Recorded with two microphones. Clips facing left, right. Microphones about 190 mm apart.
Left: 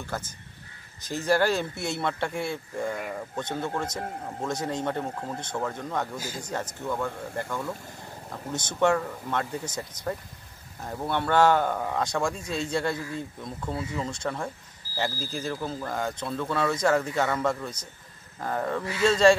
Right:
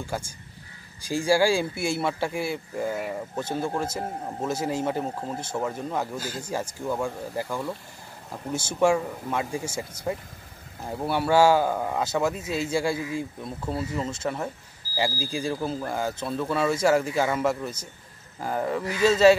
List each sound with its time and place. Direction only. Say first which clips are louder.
0.0 s speech: right 2 dB; 10° right (ahead or behind)
5.0 s speech: right 2 dB; 25° right (ahead or behind)
5.4 s speech: right 3 dB; 10° right (ahead or behind)
6.1 s speech: right 3 dB; 10° left (ahead or behind)
6.4 s speech: right 2 dB; 10° right (ahead or behind)
10.9 s speech: right 3 dB; 5° right (ahead or behind)